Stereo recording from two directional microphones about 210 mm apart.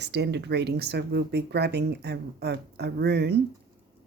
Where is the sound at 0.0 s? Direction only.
55° right (ahead or behind).